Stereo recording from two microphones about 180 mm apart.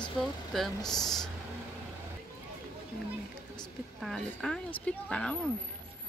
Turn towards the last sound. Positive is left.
turn(degrees=5)  # may be behind; listen again after turning